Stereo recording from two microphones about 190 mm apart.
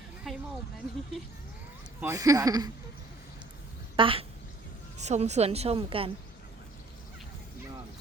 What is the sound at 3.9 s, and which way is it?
A woman's voice, 30° right (ahead or behind).